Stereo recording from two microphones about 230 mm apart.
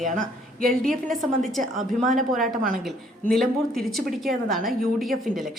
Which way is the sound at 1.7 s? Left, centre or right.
Right.